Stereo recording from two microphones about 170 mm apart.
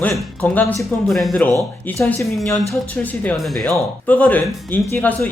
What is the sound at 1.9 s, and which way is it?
Speech, 15° left (ahead or behind).